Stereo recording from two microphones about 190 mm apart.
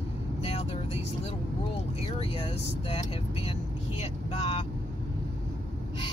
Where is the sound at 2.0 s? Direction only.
30° left (ahead or behind).